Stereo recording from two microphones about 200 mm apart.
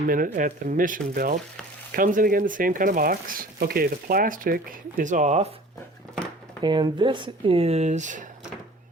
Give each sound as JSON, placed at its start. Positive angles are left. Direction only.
{"t": 0.1, "sound": "speech", "side_deg": -45}
{"t": 6.6, "sound": "speech", "side_deg": -20}